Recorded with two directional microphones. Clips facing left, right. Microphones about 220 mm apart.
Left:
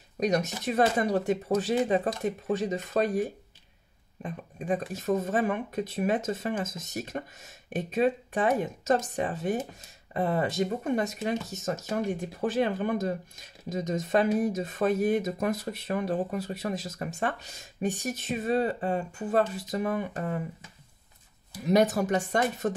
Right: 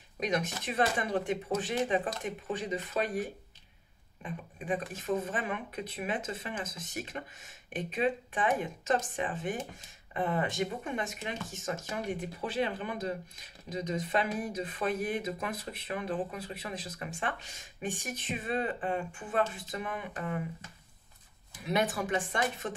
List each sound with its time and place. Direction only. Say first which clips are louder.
0.2 s speech: left 5 dB; 40° left (ahead or behind)
4.2 s speech: left 4 dB; 40° left (ahead or behind)
21.6 s speech: left 7 dB; 40° left (ahead or behind)